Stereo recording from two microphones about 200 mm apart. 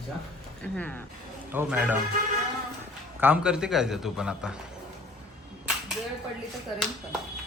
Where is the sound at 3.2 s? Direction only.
5° right (ahead or behind).